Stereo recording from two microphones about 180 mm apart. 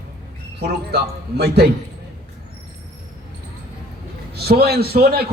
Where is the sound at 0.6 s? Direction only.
65° right (ahead or behind).